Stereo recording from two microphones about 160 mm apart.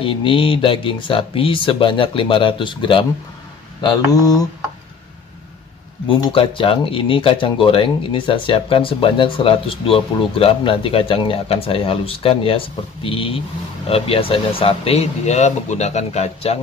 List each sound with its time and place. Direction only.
0.0 s speech: 35° left (ahead or behind)
6.0 s speech: 35° left (ahead or behind)